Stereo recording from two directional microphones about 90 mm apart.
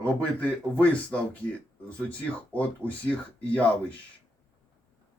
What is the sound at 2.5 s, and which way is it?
A man's voice, 15° left (ahead or behind).